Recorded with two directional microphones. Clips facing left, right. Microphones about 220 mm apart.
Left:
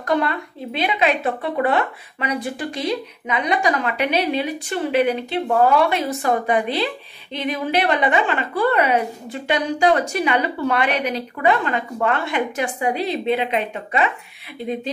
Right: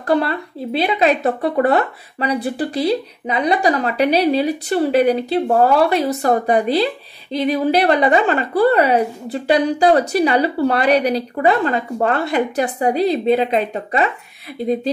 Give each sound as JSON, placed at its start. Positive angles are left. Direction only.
{"t": 0.0, "sound": "speech", "side_deg": -35}